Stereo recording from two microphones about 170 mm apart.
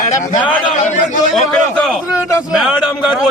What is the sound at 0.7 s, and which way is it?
Speech, 45° left (ahead or behind).